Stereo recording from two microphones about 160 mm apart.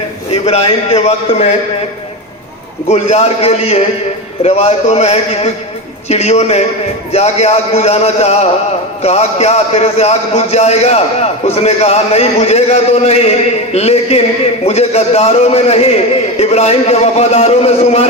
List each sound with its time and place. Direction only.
0.4 s a man's voice: 40° left (ahead or behind)
2.9 s a man's voice: 45° left (ahead or behind)